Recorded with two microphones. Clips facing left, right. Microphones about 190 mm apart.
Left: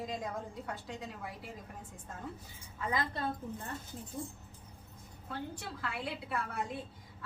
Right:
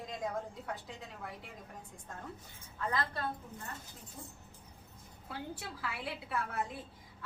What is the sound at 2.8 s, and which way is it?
Speech, 15° left (ahead or behind).